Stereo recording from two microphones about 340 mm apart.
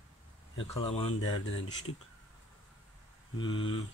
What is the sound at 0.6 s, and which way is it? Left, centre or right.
Speech, centre.